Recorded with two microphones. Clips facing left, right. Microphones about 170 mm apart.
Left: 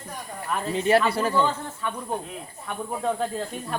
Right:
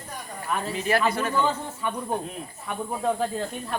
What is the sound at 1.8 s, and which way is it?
Speech, 10° right (ahead or behind).